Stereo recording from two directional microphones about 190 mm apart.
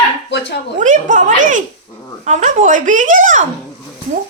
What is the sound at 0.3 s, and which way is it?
Dog, 65° left (ahead or behind).